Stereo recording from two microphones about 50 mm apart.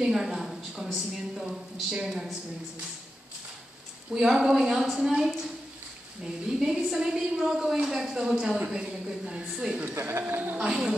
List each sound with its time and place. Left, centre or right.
0.0 s a woman's voice: centre
2.0 s a woman's voice: centre
4.1 s a woman's voice: centre
6.2 s a woman's voice: centre
9.8 s a man's voice: right
10.3 s a woman's voice: right
10.7 s a woman's voice: centre